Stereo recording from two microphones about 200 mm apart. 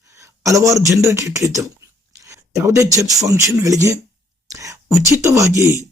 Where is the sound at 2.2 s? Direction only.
15° right (ahead or behind).